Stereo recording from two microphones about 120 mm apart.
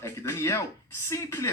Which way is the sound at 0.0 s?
25° left (ahead or behind).